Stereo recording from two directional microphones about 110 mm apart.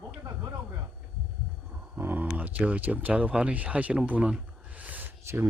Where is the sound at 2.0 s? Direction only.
15° right (ahead or behind).